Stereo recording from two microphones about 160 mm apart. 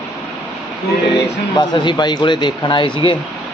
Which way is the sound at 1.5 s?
30° left (ahead or behind).